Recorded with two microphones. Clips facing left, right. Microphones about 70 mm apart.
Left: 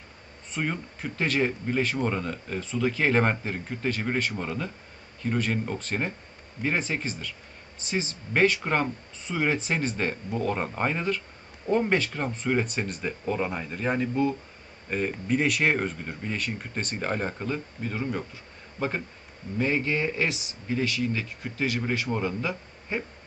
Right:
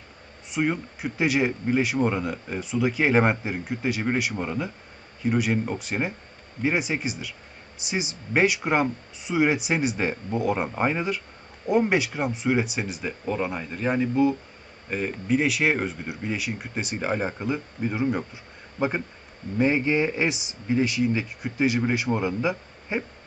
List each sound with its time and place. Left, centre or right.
0.5 s speech: centre